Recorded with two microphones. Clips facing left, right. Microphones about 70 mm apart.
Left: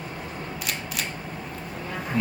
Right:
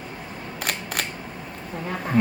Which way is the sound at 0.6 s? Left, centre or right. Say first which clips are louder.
Right 6 dB; right.